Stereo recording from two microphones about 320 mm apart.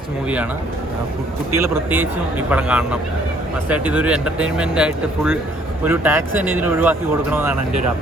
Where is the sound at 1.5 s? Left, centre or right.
Centre.